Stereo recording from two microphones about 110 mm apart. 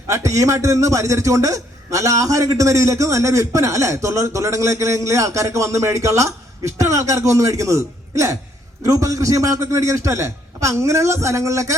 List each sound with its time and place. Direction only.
0.1 s a man's voice: 30° right (ahead or behind)